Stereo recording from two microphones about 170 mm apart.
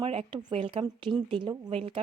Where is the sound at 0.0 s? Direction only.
35° right (ahead or behind).